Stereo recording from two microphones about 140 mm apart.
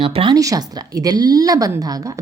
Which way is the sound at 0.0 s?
40° right (ahead or behind).